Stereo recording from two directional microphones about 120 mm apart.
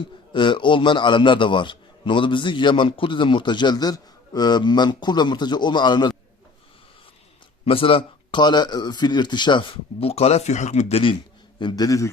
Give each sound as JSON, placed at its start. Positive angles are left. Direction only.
{"t": 0.3, "sound": "a man's voice", "side_deg": 45}
{"t": 7.6, "sound": "speech", "side_deg": 50}
{"t": 11.6, "sound": "a man's voice", "side_deg": 30}